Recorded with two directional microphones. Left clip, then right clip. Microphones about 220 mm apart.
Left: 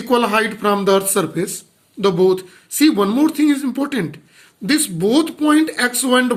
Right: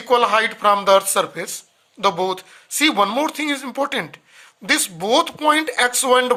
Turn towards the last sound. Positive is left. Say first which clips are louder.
# even
turn(degrees=-30)  # may be behind; listen again after turning